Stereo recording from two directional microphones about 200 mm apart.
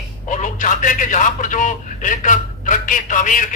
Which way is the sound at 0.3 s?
40° left (ahead or behind).